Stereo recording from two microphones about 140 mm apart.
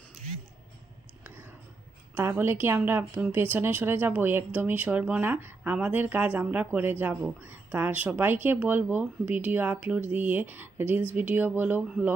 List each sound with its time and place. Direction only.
1.2 s whispering: 15° right (ahead or behind)
2.1 s speech: 15° right (ahead or behind)